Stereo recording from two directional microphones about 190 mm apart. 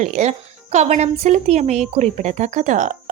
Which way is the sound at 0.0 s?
40° right (ahead or behind).